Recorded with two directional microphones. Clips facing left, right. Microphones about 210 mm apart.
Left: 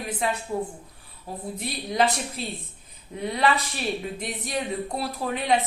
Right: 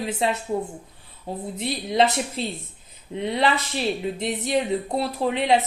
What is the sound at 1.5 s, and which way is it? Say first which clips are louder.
Speech: right 4 dB; 25° right (ahead or behind).